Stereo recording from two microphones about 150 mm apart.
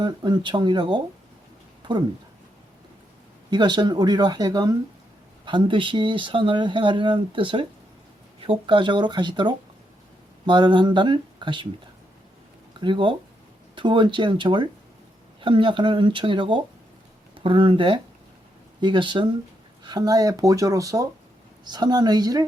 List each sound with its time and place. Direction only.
0.0 s speech: 30° right (ahead or behind)
3.5 s speech: 30° right (ahead or behind)
12.8 s speech: 35° right (ahead or behind)